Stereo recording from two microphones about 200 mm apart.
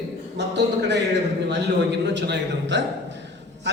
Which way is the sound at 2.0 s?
60° right (ahead or behind).